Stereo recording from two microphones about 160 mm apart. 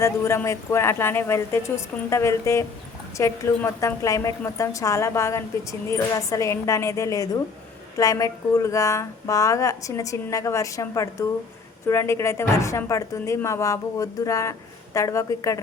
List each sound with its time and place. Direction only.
0.0 s speech: 15° left (ahead or behind)